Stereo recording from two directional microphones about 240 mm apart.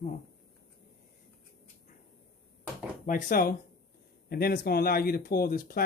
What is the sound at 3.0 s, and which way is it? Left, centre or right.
Speech, left.